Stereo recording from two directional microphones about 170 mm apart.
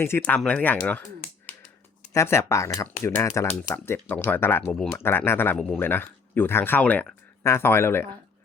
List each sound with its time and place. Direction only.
0.0 s speech: 10° left (ahead or behind)
2.1 s speech: 15° left (ahead or behind)